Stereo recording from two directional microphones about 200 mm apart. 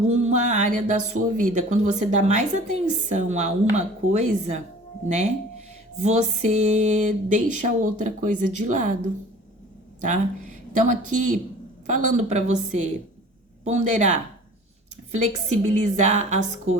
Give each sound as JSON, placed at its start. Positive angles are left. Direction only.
{"t": 0.1, "sound": "speech", "side_deg": -35}
{"t": 10.8, "sound": "speech", "side_deg": -40}
{"t": 16.7, "sound": "speech", "side_deg": -90}